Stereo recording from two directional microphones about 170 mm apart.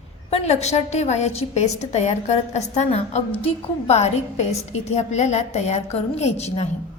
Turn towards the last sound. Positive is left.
turn(degrees=40)  # may be behind; listen again after turning